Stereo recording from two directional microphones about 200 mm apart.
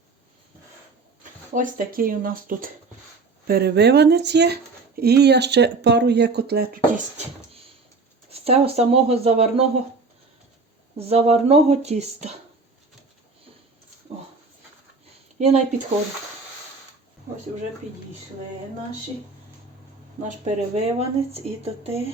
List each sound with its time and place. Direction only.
1.5 s speech: 45° right (ahead or behind)
10.9 s speech: 30° right (ahead or behind)
15.4 s speech: 35° right (ahead or behind)
20.2 s speech: 35° right (ahead or behind)